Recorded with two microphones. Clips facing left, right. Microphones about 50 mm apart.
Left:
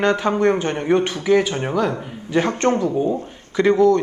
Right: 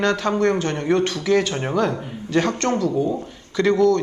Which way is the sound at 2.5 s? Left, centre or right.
Left.